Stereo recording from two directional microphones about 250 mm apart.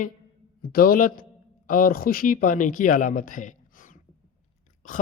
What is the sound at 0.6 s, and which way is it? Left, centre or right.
A man's voice, left.